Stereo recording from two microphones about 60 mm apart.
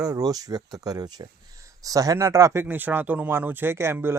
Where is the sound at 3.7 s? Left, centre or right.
Right.